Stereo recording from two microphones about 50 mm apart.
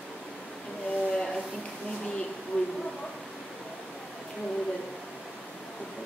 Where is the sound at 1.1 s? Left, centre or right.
Centre.